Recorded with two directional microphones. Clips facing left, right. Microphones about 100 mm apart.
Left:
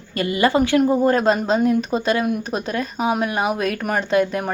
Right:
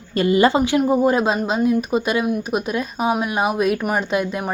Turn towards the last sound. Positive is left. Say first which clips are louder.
# left 3 dB
turn(degrees=-20)  # may be behind; listen again after turning